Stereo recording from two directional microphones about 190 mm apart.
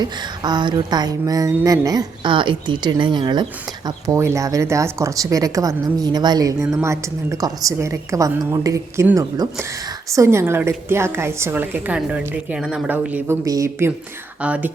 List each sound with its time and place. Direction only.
0.0 s a woman's voice: 20° right (ahead or behind); by 14.7 s 5° right (ahead or behind)